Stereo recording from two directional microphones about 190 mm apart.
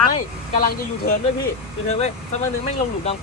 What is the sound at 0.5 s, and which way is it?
Speech, 50° left (ahead or behind).